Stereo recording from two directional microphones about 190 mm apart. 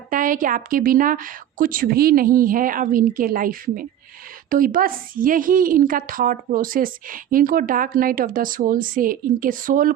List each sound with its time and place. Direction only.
0.1 s a woman's voice: 45° right (ahead or behind)